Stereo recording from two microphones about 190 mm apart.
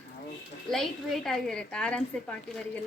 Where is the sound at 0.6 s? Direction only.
5° left (ahead or behind).